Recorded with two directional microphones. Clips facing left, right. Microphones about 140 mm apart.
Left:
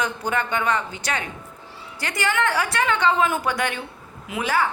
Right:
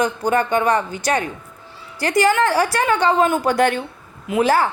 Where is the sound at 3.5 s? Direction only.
50° right (ahead or behind).